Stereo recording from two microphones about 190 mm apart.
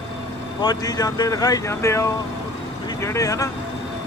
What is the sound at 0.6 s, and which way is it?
Speech, 20° left (ahead or behind).